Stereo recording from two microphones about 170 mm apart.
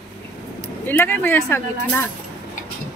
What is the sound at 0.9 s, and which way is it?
A woman's voice, 10° left (ahead or behind).